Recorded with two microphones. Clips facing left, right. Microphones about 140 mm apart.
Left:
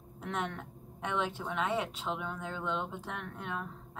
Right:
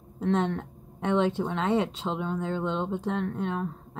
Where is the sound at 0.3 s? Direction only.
25° right (ahead or behind).